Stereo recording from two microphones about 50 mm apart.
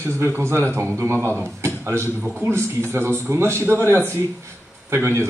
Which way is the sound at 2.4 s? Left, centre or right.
Right.